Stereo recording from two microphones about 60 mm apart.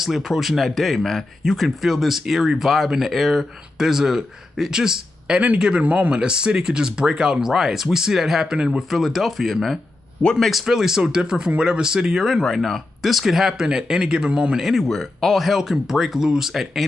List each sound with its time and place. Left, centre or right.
0.0 s speech: centre
14.6 s speech: centre